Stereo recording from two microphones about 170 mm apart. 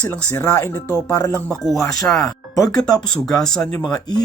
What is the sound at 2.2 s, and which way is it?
Speech, 20° left (ahead or behind).